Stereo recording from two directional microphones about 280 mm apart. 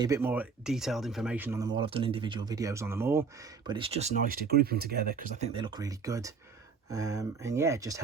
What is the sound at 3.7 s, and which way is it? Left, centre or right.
Speech, centre.